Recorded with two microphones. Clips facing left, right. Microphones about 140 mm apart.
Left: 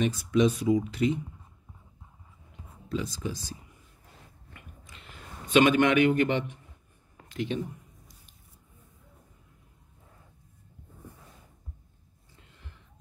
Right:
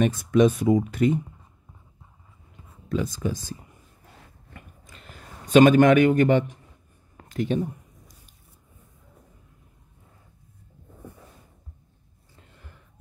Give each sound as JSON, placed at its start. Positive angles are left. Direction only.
{"t": 0.0, "sound": "speech", "side_deg": -50}
{"t": 2.9, "sound": "speech", "side_deg": -50}
{"t": 4.6, "sound": "a sound", "side_deg": -40}
{"t": 7.2, "sound": "speech", "side_deg": -45}